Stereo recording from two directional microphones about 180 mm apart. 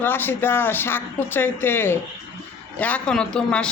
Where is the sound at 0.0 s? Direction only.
10° left (ahead or behind).